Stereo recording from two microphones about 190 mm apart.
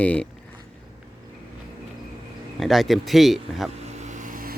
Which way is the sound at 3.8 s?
35° right (ahead or behind).